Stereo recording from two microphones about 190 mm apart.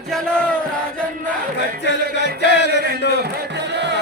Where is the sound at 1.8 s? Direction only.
65° left (ahead or behind).